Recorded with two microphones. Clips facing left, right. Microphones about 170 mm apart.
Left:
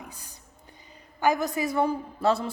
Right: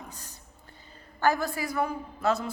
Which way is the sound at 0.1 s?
10° left (ahead or behind).